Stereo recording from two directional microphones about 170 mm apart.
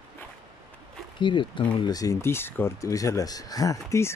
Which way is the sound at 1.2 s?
30° left (ahead or behind).